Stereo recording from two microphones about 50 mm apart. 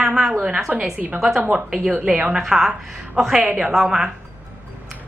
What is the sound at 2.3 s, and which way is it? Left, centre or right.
A woman's voice, centre.